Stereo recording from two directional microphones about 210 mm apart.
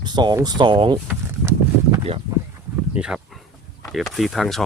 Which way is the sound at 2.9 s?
5° right (ahead or behind).